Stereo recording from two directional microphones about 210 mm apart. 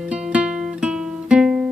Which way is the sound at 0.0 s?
5° right (ahead or behind).